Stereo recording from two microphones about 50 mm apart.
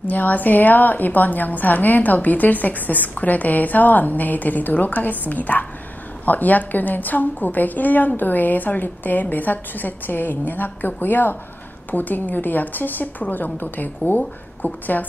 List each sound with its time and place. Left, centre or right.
0.0 s a woman's voice: left